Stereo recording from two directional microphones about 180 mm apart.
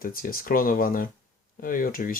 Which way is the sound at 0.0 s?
50° left (ahead or behind).